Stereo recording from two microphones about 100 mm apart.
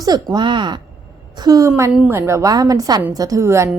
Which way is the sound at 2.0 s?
25° right (ahead or behind).